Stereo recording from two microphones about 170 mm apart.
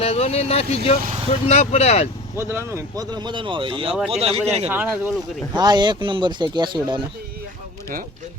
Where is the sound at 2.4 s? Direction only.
15° right (ahead or behind); by 4.7 s 40° right (ahead or behind).